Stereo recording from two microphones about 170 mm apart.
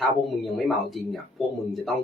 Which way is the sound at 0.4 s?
Centre (ahead or behind).